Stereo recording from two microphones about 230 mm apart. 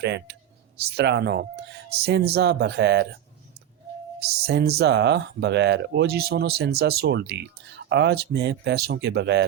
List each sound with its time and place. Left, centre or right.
0.0 s speech: right
4.2 s speech: right